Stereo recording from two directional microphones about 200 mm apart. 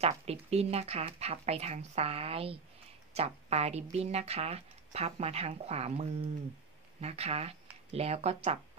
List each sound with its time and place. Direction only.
0.0 s speech: 30° right (ahead or behind)